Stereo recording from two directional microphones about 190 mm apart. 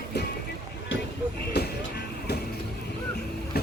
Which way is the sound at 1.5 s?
60° left (ahead or behind).